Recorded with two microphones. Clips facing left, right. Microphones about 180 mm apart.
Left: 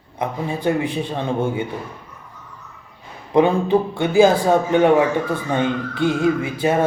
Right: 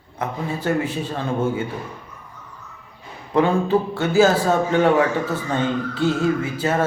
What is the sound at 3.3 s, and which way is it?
A man's voice, 15° left (ahead or behind).